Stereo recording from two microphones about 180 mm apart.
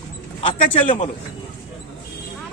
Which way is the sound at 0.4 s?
30° left (ahead or behind).